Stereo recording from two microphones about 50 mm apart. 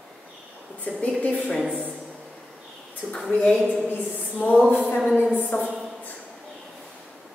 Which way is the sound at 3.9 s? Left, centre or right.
Left.